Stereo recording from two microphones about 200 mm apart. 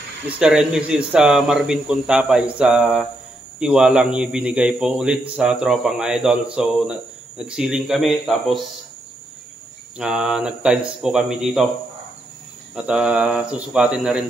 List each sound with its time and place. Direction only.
0.4 s a man's voice: 5° right (ahead or behind)
9.9 s a man's voice: 5° right (ahead or behind)
12.7 s a man's voice: 5° right (ahead or behind)